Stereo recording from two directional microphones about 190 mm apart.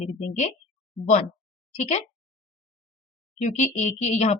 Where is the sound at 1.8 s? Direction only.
35° left (ahead or behind).